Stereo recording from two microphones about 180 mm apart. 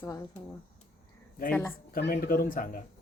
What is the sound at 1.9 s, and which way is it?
Speech, 55° left (ahead or behind).